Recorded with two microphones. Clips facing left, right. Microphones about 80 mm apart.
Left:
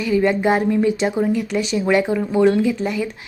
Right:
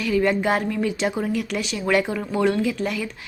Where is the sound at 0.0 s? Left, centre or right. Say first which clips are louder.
Left 3 dB; centre.